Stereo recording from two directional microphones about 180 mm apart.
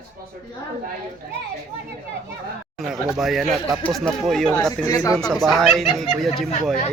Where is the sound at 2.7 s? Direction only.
Centre (ahead or behind).